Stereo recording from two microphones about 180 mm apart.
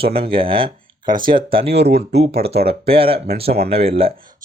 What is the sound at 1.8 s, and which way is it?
Speech, 65° right (ahead or behind).